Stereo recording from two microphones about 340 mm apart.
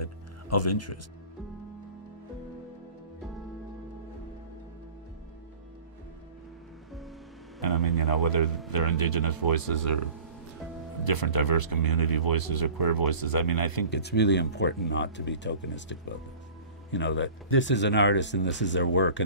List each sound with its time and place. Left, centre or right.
0.0 s music: left
7.6 s a sound: left
8.7 s speech: left
11.1 s speech: left
13.8 s speech: left